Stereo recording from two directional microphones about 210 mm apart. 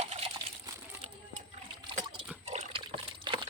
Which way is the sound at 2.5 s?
30° right (ahead or behind).